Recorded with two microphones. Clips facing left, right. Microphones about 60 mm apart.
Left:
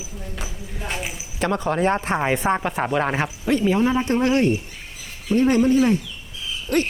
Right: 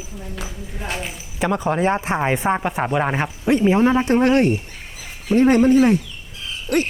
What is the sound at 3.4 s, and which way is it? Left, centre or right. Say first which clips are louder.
Speech: right 4 dB; right.